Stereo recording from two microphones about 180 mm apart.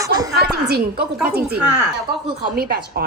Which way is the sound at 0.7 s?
60° right (ahead or behind).